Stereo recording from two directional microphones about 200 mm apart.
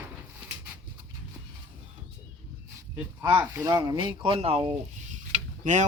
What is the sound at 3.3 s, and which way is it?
Speech, 15° right (ahead or behind).